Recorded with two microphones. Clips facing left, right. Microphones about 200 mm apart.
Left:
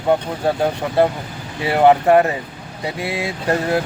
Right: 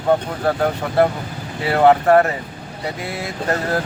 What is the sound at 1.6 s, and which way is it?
Speech, 15° left (ahead or behind).